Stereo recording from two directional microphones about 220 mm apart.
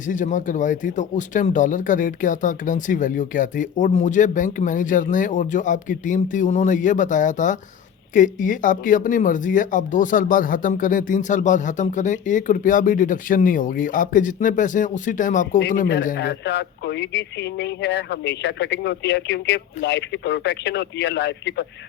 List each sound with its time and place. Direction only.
0.1 s speech: 35° left (ahead or behind)
16.0 s speech: 50° left (ahead or behind)